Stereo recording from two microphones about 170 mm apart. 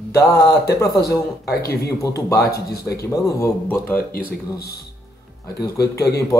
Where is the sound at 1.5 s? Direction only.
65° left (ahead or behind).